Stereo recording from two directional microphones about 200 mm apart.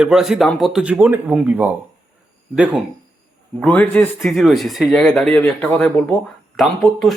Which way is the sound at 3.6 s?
10° left (ahead or behind).